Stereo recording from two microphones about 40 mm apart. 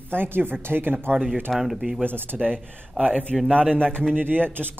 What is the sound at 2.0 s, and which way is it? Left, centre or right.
Speech, right.